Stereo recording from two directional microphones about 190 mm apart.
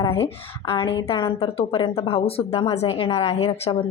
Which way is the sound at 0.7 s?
25° left (ahead or behind).